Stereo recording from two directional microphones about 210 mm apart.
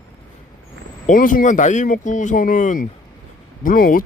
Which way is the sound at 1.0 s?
40° left (ahead or behind).